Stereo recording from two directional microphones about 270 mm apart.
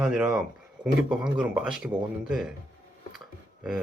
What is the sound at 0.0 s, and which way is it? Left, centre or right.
Speech, centre.